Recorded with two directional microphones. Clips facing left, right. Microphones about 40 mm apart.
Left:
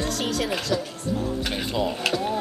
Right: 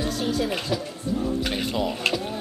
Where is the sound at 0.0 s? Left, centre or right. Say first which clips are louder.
Right 1 dB; left.